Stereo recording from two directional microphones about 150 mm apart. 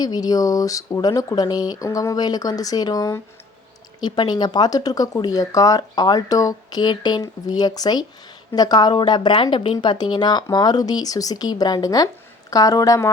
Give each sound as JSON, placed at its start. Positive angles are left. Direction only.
{"t": 0.0, "sound": "a woman's voice", "side_deg": 25}